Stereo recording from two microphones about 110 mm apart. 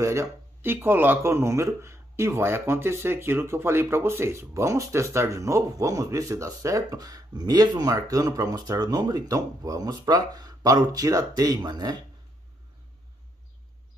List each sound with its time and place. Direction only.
0.0 s speech: 25° right (ahead or behind)